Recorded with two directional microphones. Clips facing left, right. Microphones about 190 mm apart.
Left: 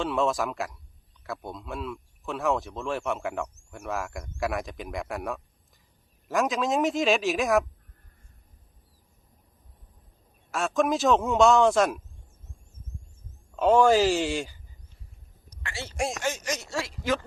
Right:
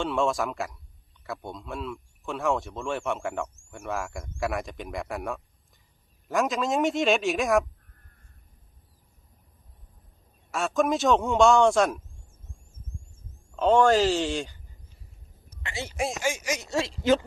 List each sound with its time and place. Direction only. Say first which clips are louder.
0.0 s speech: even; centre (ahead or behind)
10.5 s speech: even; centre (ahead or behind)
13.5 s speech: even; 5° left (ahead or behind)
15.6 s speech: even; 15° right (ahead or behind)